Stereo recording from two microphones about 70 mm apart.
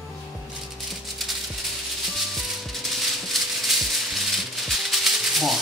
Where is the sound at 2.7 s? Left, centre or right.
Centre.